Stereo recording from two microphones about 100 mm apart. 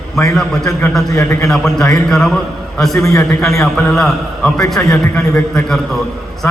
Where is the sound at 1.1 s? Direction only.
30° left (ahead or behind).